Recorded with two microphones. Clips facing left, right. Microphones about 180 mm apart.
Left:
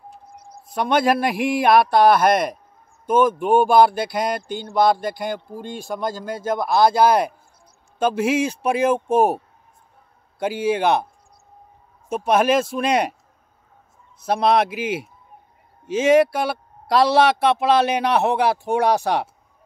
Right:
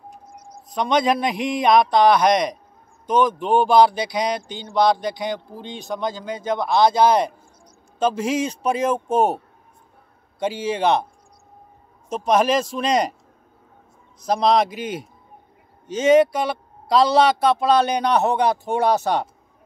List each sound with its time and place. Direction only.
0.7 s a man's voice: 5° left (ahead or behind)
4.4 s a sound: 55° left (ahead or behind)
5.2 s a man's voice: 5° left (ahead or behind)
10.4 s a man's voice: 5° left (ahead or behind)
12.3 s a man's voice: 5° left (ahead or behind)
14.2 s a man's voice: 5° left (ahead or behind)